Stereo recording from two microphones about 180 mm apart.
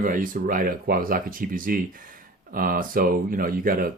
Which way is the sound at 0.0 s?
50° right (ahead or behind).